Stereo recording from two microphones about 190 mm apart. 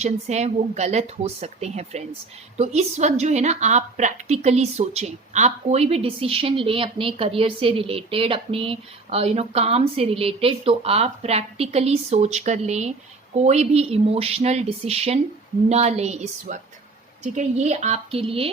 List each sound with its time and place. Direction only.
0.0 s a woman's voice: 35° right (ahead or behind)